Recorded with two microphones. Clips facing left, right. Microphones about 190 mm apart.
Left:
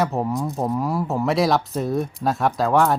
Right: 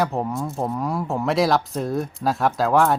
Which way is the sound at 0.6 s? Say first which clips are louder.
Left 2 dB; 5° left (ahead or behind).